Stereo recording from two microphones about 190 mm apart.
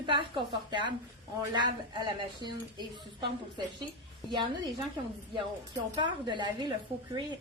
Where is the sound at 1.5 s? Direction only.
25° right (ahead or behind).